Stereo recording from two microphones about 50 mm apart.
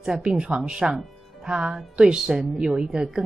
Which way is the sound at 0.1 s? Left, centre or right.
Centre.